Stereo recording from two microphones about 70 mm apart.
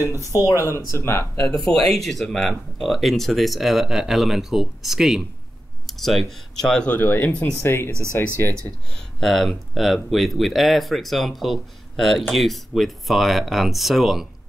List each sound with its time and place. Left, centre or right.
0.3 s speech: left
1.6 s speech: centre
6.9 s speech: left
8.9 s speech: centre